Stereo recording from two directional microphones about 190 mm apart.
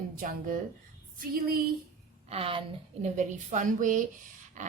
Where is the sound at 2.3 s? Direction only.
30° right (ahead or behind).